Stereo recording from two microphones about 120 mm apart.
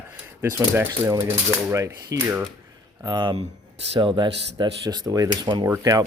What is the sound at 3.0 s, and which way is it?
Speech, 35° right (ahead or behind).